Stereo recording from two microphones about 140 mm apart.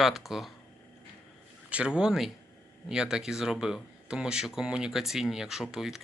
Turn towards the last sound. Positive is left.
turn(degrees=-5)  # may be behind; listen again after turning